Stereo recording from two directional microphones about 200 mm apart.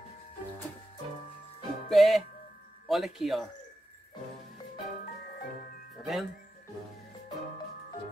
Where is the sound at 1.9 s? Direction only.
Centre (ahead or behind).